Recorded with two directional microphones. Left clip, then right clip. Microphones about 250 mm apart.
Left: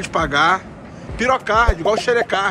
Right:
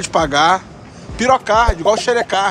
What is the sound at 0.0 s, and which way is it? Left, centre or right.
Speech, centre.